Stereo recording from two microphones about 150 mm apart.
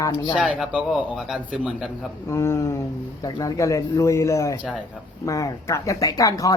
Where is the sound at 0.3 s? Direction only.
5° right (ahead or behind).